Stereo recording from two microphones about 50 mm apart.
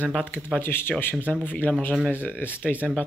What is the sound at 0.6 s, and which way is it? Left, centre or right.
Speech, left.